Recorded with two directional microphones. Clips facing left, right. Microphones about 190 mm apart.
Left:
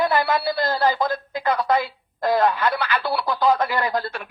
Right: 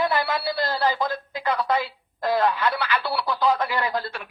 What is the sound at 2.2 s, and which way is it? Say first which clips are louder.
Radio: left 2 dB; 45° left (ahead or behind).